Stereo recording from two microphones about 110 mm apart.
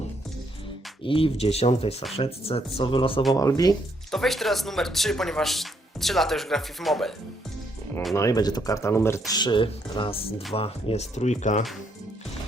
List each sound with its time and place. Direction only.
1.0 s speech: 55° left (ahead or behind)
3.3 s speech: 35° left (ahead or behind)
4.1 s speech: centre (ahead or behind)
8.1 s speech: 30° left (ahead or behind)
9.3 s speech: 45° left (ahead or behind); by 11.3 s 90° left